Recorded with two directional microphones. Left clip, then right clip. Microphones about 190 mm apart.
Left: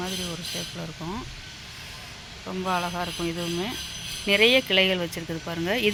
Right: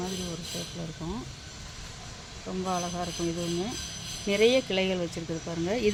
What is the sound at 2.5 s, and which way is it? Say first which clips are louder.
Speech: left 4 dB; 5° left (ahead or behind).